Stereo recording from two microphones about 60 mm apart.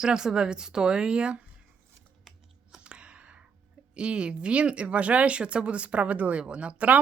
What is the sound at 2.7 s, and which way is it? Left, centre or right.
Clicking, centre.